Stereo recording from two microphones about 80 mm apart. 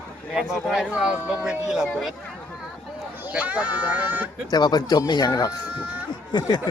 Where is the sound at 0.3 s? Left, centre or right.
Centre.